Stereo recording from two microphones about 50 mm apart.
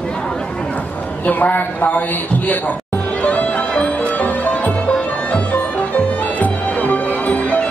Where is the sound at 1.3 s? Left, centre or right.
Left.